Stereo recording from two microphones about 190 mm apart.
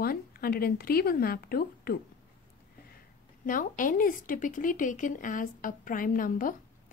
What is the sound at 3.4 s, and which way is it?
A woman's voice, 45° left (ahead or behind).